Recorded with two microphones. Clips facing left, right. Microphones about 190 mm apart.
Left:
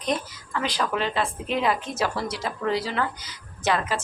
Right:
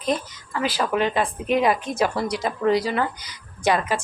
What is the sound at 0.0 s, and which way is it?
A woman's voice, 5° right (ahead or behind).